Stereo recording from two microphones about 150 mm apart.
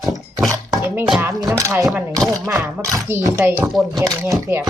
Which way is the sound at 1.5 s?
20° right (ahead or behind).